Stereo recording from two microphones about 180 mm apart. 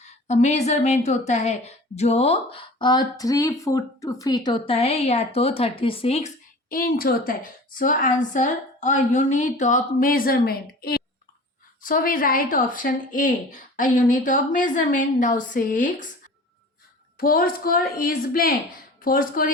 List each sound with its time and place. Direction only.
0.0 s a woman's voice: 40° left (ahead or behind)
6.7 s a woman's voice: 55° left (ahead or behind)
17.2 s a woman's voice: 55° left (ahead or behind)